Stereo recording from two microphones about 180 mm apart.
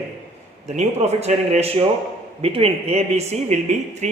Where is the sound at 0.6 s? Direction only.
40° right (ahead or behind).